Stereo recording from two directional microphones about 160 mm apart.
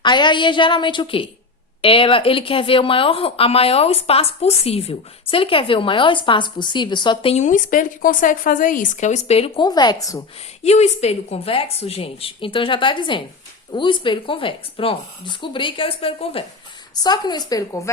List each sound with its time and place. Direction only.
0.0 s a woman's voice: 30° left (ahead or behind)
9.6 s a woman's voice: 25° left (ahead or behind)
10.6 s speech: 45° left (ahead or behind)
16.9 s a woman's voice: 25° left (ahead or behind)